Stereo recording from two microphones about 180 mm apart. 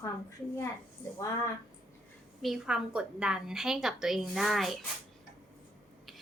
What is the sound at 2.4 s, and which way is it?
A woman's voice, centre (ahead or behind).